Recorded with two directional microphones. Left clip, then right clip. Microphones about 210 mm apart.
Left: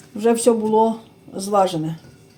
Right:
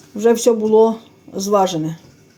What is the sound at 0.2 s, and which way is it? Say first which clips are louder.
Speech: right 3 dB; 35° right (ahead or behind).